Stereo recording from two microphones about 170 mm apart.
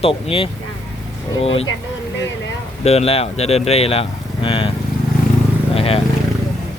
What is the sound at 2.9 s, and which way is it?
Speech, 35° left (ahead or behind).